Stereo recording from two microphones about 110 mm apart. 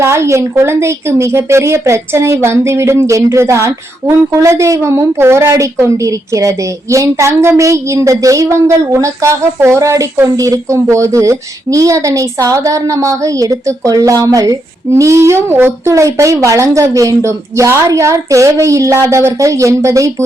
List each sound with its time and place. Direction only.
0.0 s a woman's voice: 25° right (ahead or behind)